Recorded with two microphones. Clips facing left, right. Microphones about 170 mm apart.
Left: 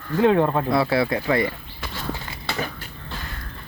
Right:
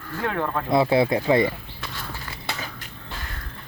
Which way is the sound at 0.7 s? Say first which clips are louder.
Right 1 dB; 20° right (ahead or behind).